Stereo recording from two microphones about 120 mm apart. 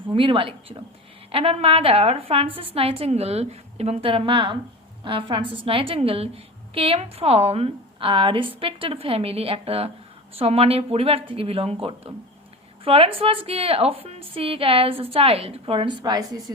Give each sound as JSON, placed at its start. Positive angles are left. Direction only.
{"t": 0.1, "sound": "a woman's voice", "side_deg": -50}